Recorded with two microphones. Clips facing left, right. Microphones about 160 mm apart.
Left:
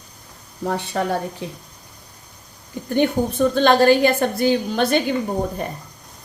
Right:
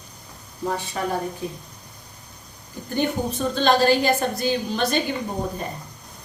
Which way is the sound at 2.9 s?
55° left (ahead or behind).